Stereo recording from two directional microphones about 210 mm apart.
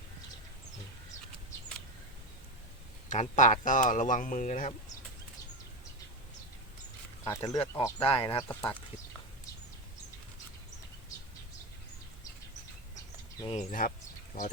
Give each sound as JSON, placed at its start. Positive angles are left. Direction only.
{"t": 3.1, "sound": "speech", "side_deg": 35}
{"t": 7.3, "sound": "speech", "side_deg": 20}
{"t": 8.0, "sound": "speech", "side_deg": 25}
{"t": 8.4, "sound": "speech", "side_deg": 10}
{"t": 13.4, "sound": "speech", "side_deg": 30}